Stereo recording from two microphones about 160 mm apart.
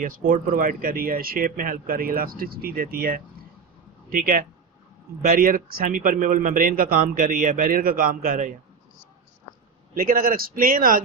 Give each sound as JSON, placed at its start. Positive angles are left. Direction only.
{"t": 0.0, "sound": "a man's voice", "side_deg": -60}
{"t": 9.9, "sound": "a man's voice", "side_deg": -60}